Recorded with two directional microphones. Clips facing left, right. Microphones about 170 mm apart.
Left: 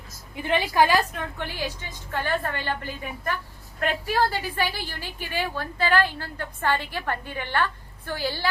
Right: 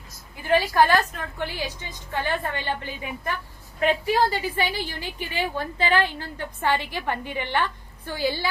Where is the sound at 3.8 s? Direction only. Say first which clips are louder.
Right 3 dB; 15° right (ahead or behind).